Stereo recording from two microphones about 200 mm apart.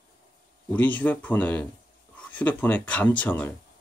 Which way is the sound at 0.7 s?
10° left (ahead or behind).